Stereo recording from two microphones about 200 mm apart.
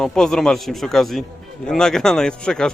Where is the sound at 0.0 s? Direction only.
5° left (ahead or behind).